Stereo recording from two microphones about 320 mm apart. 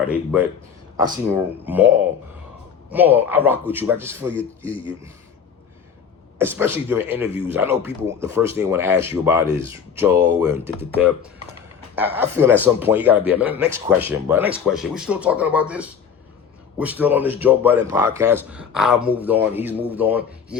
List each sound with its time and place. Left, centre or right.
0.1 s speech: centre
6.4 s speech: centre